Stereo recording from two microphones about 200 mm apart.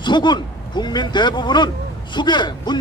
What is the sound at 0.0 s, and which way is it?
A man's voice, 20° left (ahead or behind).